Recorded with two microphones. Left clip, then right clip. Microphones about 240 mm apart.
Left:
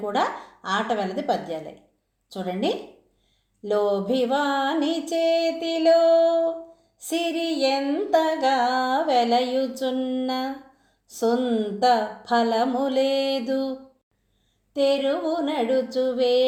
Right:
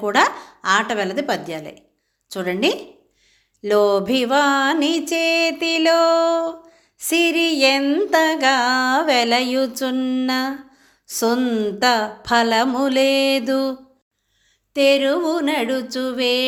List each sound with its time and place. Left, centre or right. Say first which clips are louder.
0.0 s music: right 7 dB; right